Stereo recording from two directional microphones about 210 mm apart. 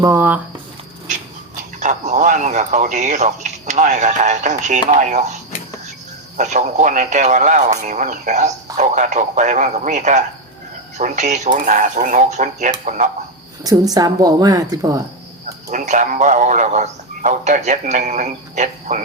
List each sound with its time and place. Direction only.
0.0 s speech: 10° right (ahead or behind)
1.8 s speech: 35° right (ahead or behind)
13.7 s speech: 20° right (ahead or behind)
15.4 s speech: 35° right (ahead or behind)